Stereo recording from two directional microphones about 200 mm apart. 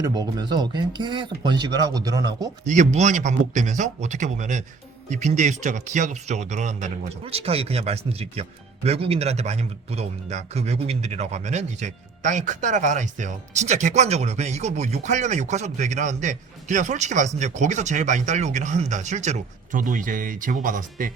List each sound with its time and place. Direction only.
0.0 s speech: 20° right (ahead or behind)
2.6 s speech: 35° right (ahead or behind)